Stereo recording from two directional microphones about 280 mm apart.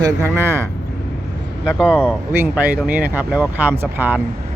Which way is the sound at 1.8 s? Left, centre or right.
Centre.